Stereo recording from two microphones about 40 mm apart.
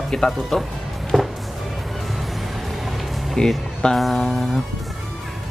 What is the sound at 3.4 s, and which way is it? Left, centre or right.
Speech, centre.